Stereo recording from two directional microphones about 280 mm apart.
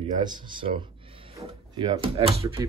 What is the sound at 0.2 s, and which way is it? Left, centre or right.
Speech, centre.